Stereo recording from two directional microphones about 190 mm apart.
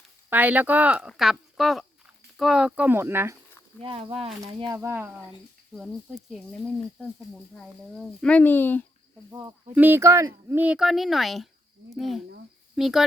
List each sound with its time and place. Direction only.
0.3 s speech: 10° right (ahead or behind)
3.8 s speech: 30° right (ahead or behind)
4.6 s speech: 15° right (ahead or behind)
7.5 s speech: 5° left (ahead or behind)
9.3 s speech: 20° right (ahead or behind); by 13.1 s centre (ahead or behind)